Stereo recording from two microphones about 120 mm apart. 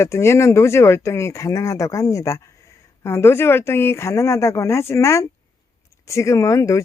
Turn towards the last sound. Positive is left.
turn(degrees=25)  # may be behind; listen again after turning